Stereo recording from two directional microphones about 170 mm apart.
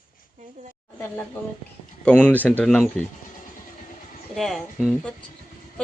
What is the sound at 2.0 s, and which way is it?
Speech, 10° left (ahead or behind).